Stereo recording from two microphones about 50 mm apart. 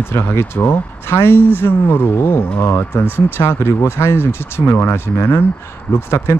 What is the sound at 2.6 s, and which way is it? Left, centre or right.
Speech, left.